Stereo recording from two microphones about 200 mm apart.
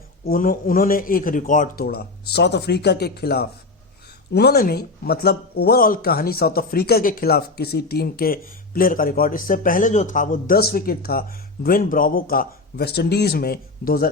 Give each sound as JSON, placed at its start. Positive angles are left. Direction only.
{"t": 0.3, "sound": "speech", "side_deg": 45}